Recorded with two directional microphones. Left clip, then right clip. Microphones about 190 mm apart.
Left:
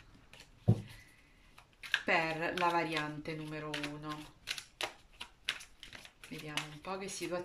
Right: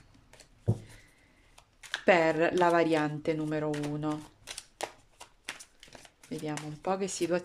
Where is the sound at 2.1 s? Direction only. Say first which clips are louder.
Right 11 dB; 55° right (ahead or behind).